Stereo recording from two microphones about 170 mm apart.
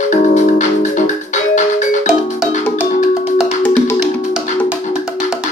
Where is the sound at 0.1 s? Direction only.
45° left (ahead or behind).